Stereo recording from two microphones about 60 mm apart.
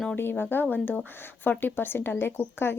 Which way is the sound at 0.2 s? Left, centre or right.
Left.